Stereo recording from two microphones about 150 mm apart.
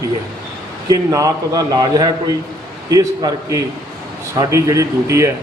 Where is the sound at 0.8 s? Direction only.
20° right (ahead or behind).